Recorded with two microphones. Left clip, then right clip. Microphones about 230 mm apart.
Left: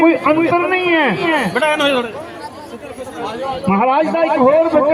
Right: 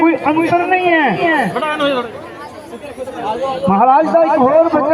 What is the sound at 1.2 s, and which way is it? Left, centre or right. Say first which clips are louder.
Speech: right 2 dB; right.